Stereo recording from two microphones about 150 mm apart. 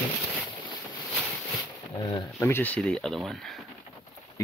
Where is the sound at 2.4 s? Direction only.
15° left (ahead or behind).